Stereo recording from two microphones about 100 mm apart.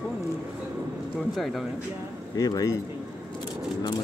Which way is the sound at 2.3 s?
35° left (ahead or behind).